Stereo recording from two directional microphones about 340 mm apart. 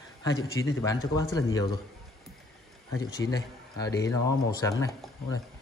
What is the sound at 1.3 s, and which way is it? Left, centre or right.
Speech, centre.